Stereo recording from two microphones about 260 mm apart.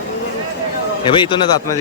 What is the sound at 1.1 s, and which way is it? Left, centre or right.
Speech, centre.